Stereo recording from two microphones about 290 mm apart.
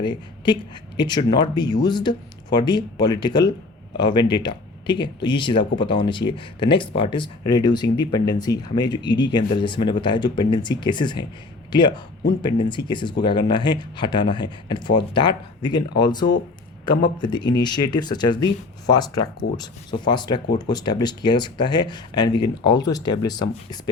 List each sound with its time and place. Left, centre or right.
0.0 s speech: centre